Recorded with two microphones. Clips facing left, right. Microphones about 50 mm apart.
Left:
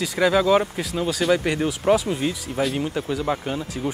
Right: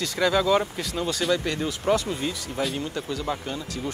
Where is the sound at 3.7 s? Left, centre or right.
Left.